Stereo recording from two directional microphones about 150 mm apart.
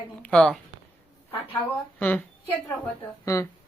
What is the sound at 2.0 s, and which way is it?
Speech, 10° left (ahead or behind).